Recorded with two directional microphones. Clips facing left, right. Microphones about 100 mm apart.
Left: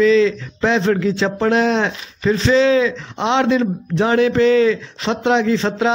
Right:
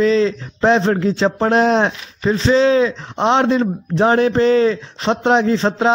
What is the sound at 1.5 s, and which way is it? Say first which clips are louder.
Speech: right 2 dB; 35° right (ahead or behind).